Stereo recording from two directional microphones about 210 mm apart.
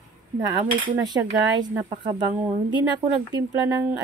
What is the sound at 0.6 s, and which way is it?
A woman's voice, 20° right (ahead or behind).